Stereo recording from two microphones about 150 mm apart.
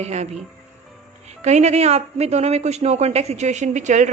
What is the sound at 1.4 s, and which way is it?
A woman's voice, 50° right (ahead or behind).